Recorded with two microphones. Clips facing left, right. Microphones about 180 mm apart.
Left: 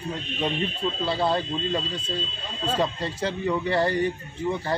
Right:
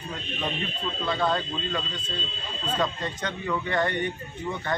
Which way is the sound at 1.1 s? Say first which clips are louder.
Even; 30° left (ahead or behind).